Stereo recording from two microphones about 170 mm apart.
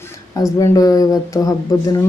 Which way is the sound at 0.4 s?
20° left (ahead or behind).